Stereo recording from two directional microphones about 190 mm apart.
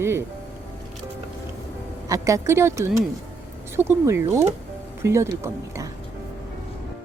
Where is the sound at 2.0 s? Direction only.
15° right (ahead or behind).